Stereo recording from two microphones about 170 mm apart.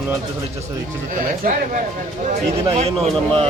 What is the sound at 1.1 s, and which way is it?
Speech, 55° right (ahead or behind).